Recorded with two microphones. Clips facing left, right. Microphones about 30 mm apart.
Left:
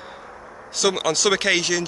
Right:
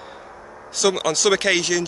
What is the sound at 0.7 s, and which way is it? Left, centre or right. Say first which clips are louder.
Speech: right 1 dB; centre.